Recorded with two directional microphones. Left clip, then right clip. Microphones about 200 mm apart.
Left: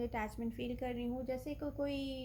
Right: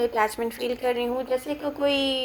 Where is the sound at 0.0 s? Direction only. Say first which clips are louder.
Right 17 dB; 15° right (ahead or behind).